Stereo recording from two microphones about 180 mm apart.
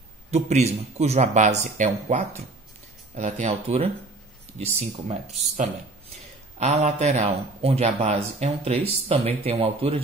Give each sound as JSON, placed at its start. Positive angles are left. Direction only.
{"t": 0.3, "sound": "speech", "side_deg": -35}
{"t": 6.6, "sound": "speech", "side_deg": -40}